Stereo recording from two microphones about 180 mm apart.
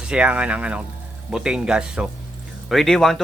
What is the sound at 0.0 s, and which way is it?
Speech, 5° right (ahead or behind).